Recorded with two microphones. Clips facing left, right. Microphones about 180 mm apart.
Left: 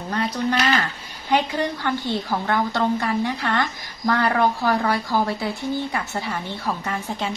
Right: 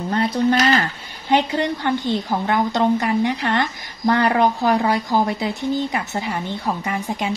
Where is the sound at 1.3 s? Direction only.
20° right (ahead or behind).